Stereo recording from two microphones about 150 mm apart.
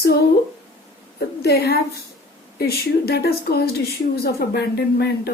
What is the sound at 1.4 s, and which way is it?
Speech, 90° left.